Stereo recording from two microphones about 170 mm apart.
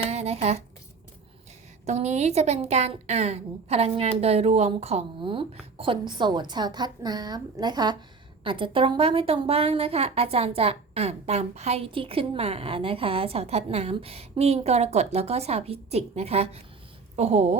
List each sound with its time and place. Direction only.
0.1 s speech: 40° right (ahead or behind)
1.9 s a woman's voice: 40° right (ahead or behind)